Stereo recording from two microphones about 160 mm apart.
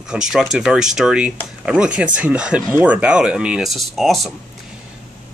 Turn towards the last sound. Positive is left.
turn(degrees=0)  # may be behind; listen again after turning